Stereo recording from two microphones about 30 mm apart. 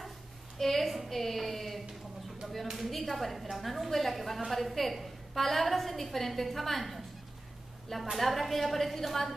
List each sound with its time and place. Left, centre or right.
0.6 s a woman's voice: centre
2.4 s a sound: centre
3.0 s a woman's voice: centre